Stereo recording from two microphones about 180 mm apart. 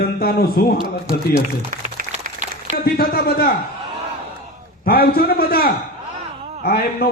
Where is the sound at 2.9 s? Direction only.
60° left (ahead or behind).